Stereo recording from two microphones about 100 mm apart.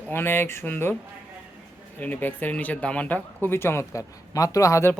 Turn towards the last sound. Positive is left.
turn(degrees=30)  # may be behind; listen again after turning